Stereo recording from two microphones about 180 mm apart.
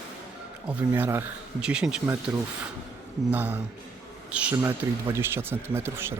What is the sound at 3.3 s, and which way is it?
Speech, 10° right (ahead or behind).